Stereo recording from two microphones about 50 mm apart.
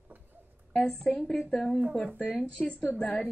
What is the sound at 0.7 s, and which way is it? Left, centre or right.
Speech, centre.